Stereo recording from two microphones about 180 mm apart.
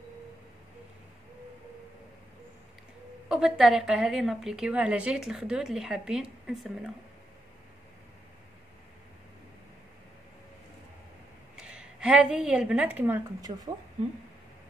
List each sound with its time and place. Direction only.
3.3 s a woman's voice: 5° right (ahead or behind)
11.5 s a woman's voice: 5° right (ahead or behind)
13.5 s speech: 30° right (ahead or behind)